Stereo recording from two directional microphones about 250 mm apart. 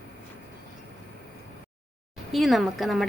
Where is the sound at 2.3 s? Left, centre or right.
Centre.